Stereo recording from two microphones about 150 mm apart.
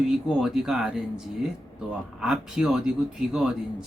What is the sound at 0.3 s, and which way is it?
Speech, 5° right (ahead or behind).